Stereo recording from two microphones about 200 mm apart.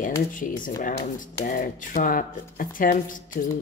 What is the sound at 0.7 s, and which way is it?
Speech, 40° left (ahead or behind).